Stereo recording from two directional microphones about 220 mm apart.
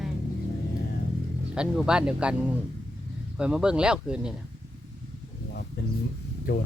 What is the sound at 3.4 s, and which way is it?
Speech, 5° right (ahead or behind).